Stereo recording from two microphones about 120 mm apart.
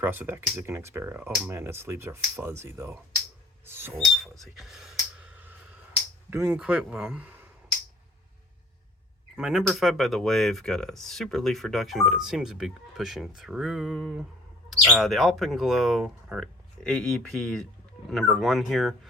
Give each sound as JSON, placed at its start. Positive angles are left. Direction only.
{"t": 0.0, "sound": "speech", "side_deg": -15}
{"t": 3.9, "sound": "speech", "side_deg": 0}
{"t": 6.3, "sound": "speech", "side_deg": -20}
{"t": 6.6, "sound": "speech", "side_deg": -10}
{"t": 9.3, "sound": "speech", "side_deg": -5}